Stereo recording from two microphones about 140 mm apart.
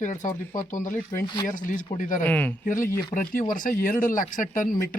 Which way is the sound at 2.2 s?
10° left (ahead or behind).